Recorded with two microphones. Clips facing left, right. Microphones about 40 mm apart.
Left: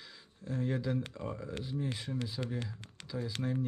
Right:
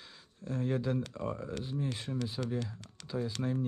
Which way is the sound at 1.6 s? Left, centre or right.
Right.